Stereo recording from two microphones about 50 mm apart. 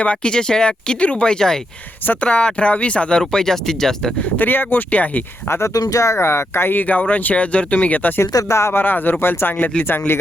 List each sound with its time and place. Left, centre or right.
0.0 s speech: left
2.2 s speech: left
4.4 s speech: left
5.5 s speech: left
6.8 s speech: left
8.2 s speech: left
8.8 s speech: left
9.6 s speech: left